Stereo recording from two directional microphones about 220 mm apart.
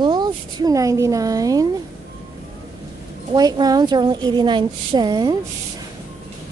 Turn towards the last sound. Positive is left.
turn(degrees=-20)  # may be behind; listen again after turning